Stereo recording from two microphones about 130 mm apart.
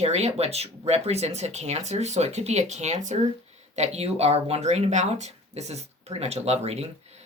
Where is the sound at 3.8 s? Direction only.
55° right (ahead or behind).